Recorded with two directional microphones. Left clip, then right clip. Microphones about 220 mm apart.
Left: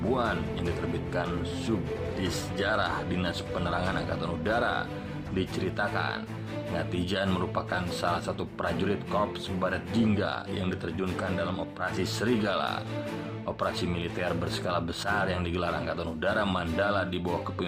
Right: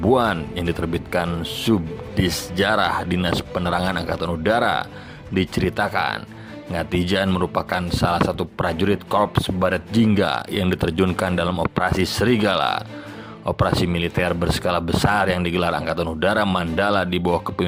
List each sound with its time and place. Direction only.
0.1 s a man's voice: 35° right (ahead or behind)